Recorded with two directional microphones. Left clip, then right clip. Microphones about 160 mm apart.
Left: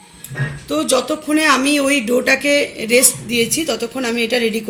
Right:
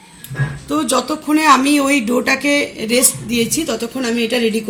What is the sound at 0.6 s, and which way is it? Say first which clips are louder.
Speech: even; 35° right (ahead or behind).